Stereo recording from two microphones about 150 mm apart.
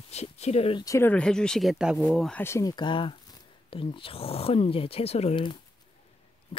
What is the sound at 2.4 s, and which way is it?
Speech, 20° left (ahead or behind).